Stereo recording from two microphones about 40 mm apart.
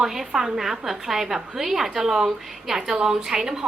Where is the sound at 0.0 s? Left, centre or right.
Centre.